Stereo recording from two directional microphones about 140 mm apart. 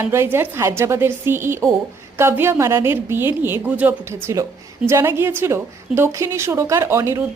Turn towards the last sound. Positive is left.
turn(degrees=-20)  # may be behind; listen again after turning